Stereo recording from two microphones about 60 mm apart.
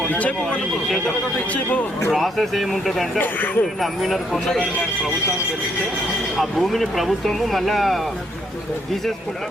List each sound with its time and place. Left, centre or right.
0.1 s speech: left
2.0 s speech: centre
3.2 s speech: left
3.8 s speech: centre
6.3 s speech: centre